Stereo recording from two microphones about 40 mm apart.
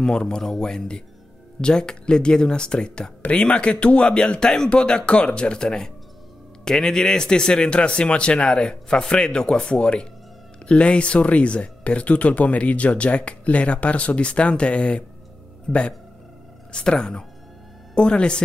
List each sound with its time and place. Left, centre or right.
0.0 s speech: left
15.7 s speech: centre